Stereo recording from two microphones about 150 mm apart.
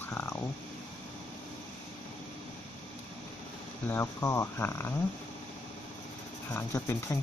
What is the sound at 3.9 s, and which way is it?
Speech, 15° left (ahead or behind).